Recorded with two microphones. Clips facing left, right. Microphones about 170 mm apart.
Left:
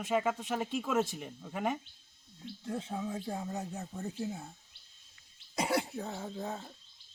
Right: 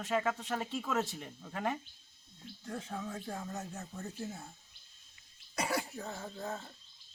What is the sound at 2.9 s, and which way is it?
A man's voice, 15° left (ahead or behind).